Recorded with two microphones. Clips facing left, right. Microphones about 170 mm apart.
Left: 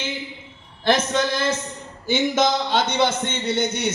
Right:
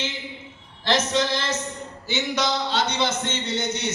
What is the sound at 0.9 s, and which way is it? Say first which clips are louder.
Speech: left 2 dB; 50° left (ahead or behind).